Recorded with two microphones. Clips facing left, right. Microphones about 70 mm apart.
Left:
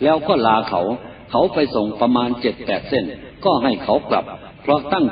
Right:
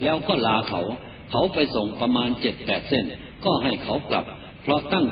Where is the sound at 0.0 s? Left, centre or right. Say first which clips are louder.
Left 7 dB; left.